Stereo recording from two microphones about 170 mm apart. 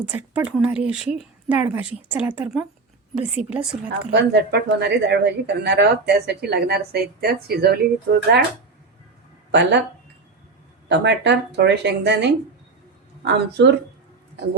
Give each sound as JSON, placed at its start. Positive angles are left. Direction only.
{"t": 0.0, "sound": "speech", "side_deg": -10}
{"t": 4.1, "sound": "speech", "side_deg": -85}
{"t": 9.5, "sound": "speech", "side_deg": -90}
{"t": 10.8, "sound": "speech", "side_deg": -90}